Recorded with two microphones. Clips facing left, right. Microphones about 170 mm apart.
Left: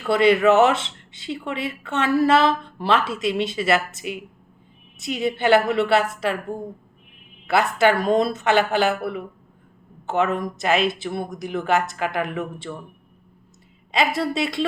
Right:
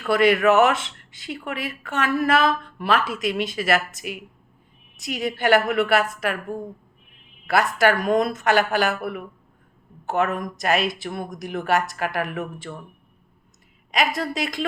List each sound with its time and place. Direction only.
0.0 s speech: 25° left (ahead or behind)
13.9 s speech: 30° left (ahead or behind)